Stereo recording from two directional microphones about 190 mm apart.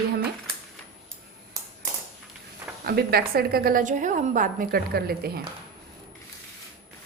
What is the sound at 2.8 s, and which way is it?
A woman's voice, 55° right (ahead or behind).